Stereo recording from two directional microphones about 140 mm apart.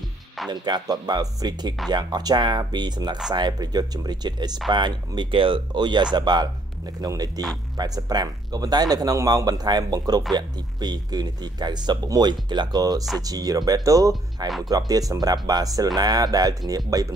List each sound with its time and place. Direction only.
0.5 s speech: 30° right (ahead or behind)